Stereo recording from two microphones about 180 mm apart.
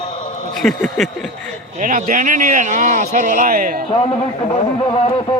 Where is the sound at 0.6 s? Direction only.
Centre (ahead or behind).